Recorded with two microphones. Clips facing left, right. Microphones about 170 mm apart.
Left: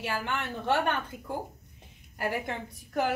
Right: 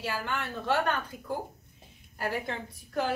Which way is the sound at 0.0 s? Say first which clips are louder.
Left 1 dB; 20° left (ahead or behind).